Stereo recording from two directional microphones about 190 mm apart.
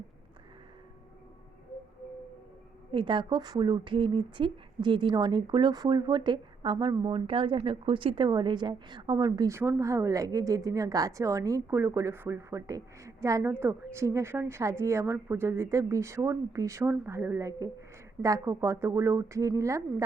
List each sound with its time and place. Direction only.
2.9 s speech: 25° right (ahead or behind)